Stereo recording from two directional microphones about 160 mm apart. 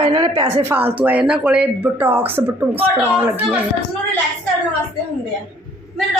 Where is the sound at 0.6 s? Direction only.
15° right (ahead or behind).